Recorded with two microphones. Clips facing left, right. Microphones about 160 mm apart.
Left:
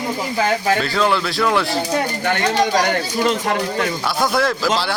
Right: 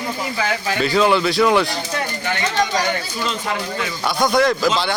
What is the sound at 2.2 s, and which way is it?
Speech, 55° left (ahead or behind).